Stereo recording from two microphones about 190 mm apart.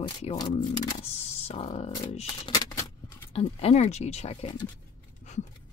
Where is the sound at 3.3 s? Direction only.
30° left (ahead or behind).